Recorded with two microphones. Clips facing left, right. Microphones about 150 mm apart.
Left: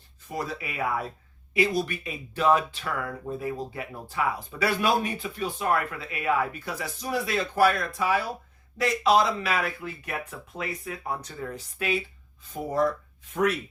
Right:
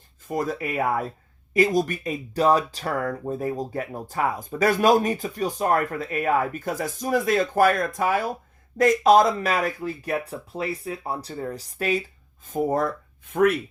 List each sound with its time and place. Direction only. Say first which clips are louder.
0.3 s speech: right 6 dB; 45° right (ahead or behind)
12.5 s speech: right 3 dB; 55° right (ahead or behind)